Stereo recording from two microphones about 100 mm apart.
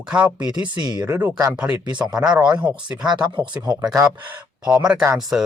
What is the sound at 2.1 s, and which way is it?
Speech, 10° right (ahead or behind).